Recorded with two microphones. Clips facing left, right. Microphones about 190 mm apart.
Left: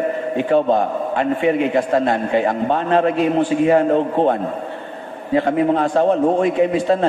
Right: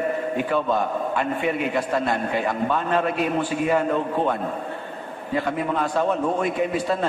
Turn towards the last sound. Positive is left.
turn(degrees=30)  # may be behind; listen again after turning